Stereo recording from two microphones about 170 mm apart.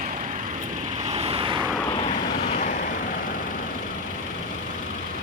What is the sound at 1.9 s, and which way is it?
Vehicle, 35° left (ahead or behind).